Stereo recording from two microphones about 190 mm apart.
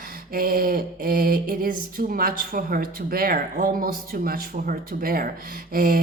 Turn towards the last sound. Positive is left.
turn(degrees=-50)  # may be behind; listen again after turning